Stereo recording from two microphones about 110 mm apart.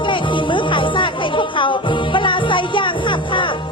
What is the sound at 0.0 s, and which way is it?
Music, 50° left (ahead or behind).